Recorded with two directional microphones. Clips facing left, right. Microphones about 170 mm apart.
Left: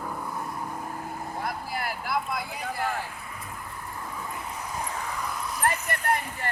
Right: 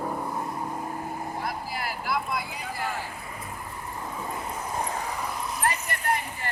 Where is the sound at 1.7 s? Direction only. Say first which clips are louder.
Left 1 dB; 50° left (ahead or behind).